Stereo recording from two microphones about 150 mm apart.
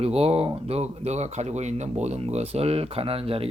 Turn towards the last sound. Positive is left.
turn(degrees=-40)  # may be behind; listen again after turning